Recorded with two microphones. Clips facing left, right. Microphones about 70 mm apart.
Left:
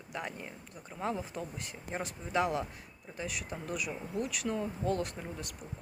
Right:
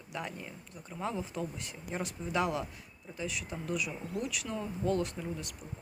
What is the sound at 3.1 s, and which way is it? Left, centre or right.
Speech, left.